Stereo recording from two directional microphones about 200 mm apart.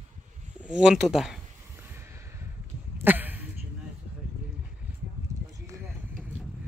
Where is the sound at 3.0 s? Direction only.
10° right (ahead or behind).